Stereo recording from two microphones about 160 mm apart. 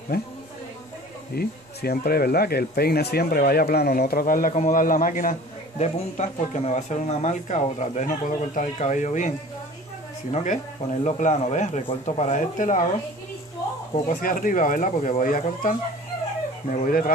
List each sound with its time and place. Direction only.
1.3 s speech: 75° left (ahead or behind); by 9.3 s 50° left (ahead or behind)
10.3 s speech: 50° left (ahead or behind)
14.2 s speech: 60° left (ahead or behind)